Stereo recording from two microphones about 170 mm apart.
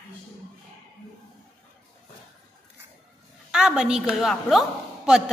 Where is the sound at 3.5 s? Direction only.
5° right (ahead or behind).